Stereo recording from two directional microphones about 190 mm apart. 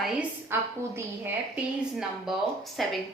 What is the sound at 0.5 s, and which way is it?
Speech, 10° right (ahead or behind).